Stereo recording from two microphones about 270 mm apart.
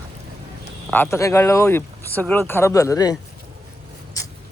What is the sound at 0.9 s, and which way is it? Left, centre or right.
Speech, centre.